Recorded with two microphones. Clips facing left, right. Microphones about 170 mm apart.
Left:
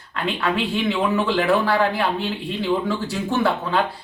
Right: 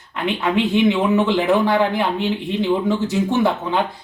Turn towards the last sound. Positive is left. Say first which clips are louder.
# right 2 dB
turn(degrees=-20)  # may be behind; listen again after turning